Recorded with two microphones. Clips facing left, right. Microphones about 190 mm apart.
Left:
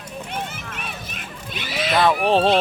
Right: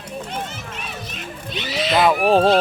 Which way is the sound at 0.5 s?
55° left (ahead or behind).